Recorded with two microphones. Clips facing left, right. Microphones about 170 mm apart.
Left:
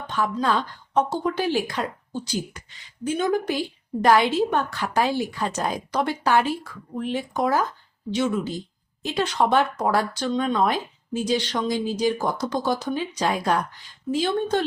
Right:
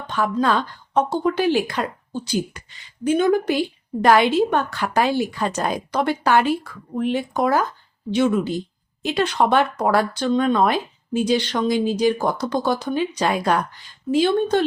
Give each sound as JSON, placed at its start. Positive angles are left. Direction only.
{"t": 0.1, "sound": "a woman's voice", "side_deg": -70}